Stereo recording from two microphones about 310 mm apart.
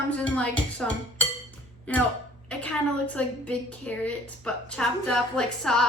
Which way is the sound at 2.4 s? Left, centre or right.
Centre.